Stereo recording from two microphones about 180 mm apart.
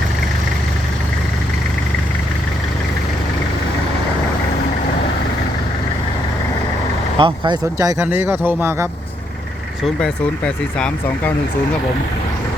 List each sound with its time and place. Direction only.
7.2 s speech: 25° right (ahead or behind)
7.9 s a man's voice: 10° right (ahead or behind)
9.8 s speech: 5° left (ahead or behind)